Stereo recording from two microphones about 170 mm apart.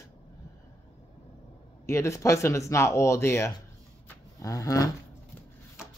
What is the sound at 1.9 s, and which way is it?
Speech, 15° left (ahead or behind).